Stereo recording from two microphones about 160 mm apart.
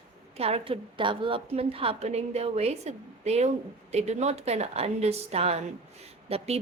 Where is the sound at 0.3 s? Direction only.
40° right (ahead or behind).